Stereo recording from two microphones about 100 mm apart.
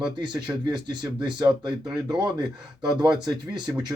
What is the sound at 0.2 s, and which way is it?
Speech, 45° right (ahead or behind).